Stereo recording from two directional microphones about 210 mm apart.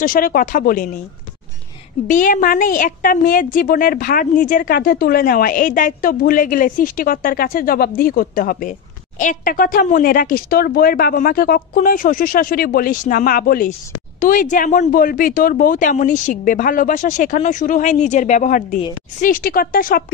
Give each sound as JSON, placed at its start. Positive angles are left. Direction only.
{"t": 0.0, "sound": "a woman's voice", "side_deg": 40}
{"t": 2.0, "sound": "a woman's voice", "side_deg": 40}